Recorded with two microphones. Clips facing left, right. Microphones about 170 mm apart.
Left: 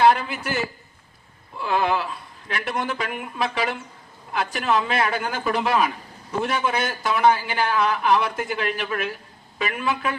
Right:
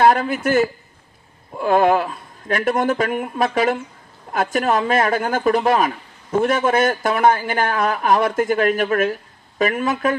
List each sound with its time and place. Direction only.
0.0 s a man's voice: 45° right (ahead or behind)